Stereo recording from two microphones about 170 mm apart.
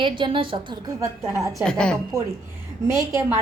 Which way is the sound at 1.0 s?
15° right (ahead or behind).